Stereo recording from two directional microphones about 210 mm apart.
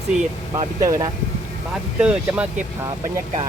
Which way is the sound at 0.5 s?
15° right (ahead or behind).